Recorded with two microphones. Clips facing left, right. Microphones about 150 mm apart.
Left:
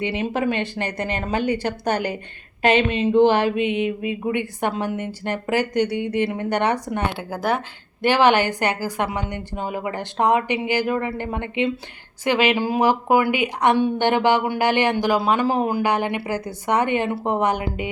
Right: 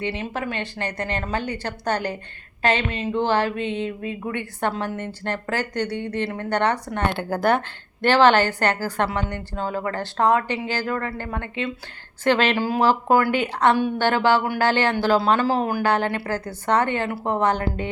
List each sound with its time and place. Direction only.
0.0 s a woman's voice: 15° left (ahead or behind)